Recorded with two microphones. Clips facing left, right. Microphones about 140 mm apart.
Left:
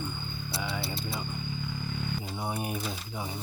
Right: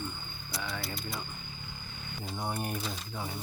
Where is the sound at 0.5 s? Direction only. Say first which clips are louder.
Left 3 dB; 30° left (ahead or behind).